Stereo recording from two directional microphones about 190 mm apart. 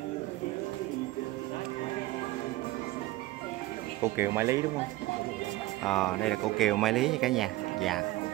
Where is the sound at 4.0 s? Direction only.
15° right (ahead or behind).